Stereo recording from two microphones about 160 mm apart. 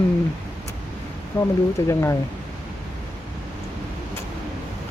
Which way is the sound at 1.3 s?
25° left (ahead or behind).